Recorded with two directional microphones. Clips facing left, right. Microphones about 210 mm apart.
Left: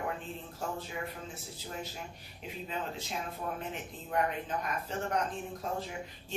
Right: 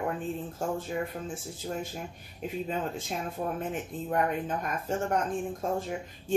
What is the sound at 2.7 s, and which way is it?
Speech, 50° right (ahead or behind).